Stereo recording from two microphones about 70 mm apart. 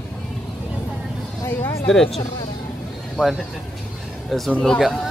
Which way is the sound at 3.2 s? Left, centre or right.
Centre.